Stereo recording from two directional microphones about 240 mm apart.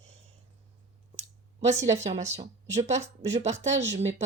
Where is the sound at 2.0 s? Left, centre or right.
Right.